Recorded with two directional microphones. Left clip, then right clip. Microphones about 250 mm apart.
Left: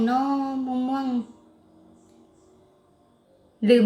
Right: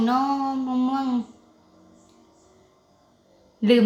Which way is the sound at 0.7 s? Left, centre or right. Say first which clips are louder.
Right 2 dB; centre.